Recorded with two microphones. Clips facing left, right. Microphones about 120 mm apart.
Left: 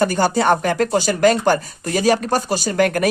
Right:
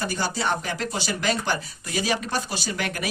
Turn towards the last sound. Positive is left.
turn(degrees=50)  # may be behind; listen again after turning